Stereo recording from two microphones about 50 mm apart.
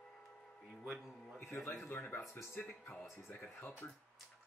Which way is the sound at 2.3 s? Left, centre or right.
Left.